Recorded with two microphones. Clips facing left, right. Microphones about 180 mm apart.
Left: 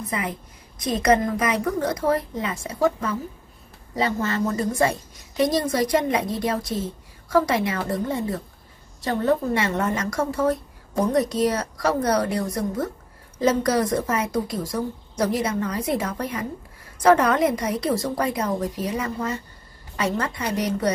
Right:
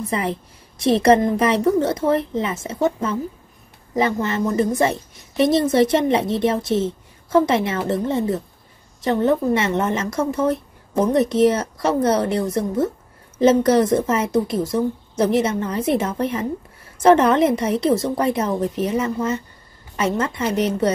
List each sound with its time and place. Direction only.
0.1 s a woman's voice: 30° right (ahead or behind)